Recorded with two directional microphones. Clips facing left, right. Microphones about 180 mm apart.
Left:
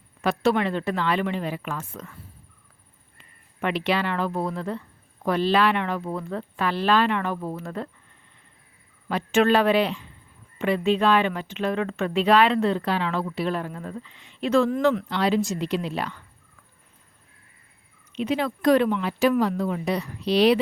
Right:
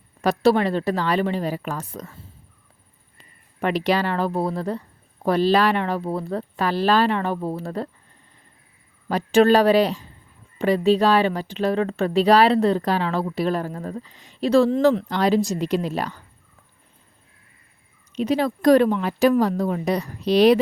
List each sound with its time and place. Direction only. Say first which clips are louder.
0.2 s speech: right 4 dB; 35° right (ahead or behind)
3.2 s speech: right 3 dB; 40° right (ahead or behind)
9.0 s speech: right 4 dB; 40° right (ahead or behind)
18.1 s speech: right 4 dB; 40° right (ahead or behind)